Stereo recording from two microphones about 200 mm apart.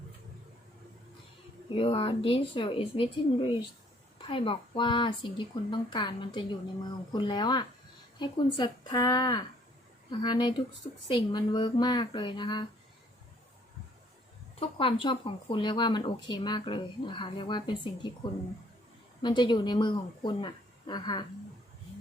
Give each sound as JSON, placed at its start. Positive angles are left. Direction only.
{"t": 1.7, "sound": "speech", "side_deg": 25}
{"t": 14.6, "sound": "speech", "side_deg": 25}